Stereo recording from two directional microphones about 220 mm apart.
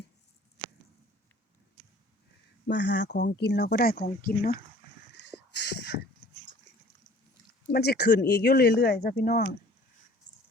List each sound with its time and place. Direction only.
2.6 s speech: 50° left (ahead or behind)
5.1 s a sound: 50° left (ahead or behind)
7.7 s speech: 45° left (ahead or behind)